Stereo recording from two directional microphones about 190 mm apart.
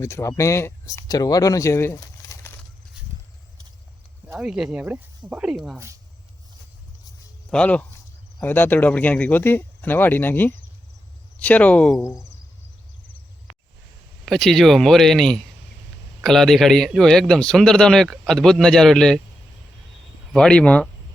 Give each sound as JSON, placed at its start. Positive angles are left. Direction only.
{"t": 0.0, "sound": "speech", "side_deg": 15}
{"t": 4.3, "sound": "speech", "side_deg": -5}
{"t": 7.5, "sound": "speech", "side_deg": 5}
{"t": 14.3, "sound": "speech", "side_deg": 0}
{"t": 20.3, "sound": "speech", "side_deg": 5}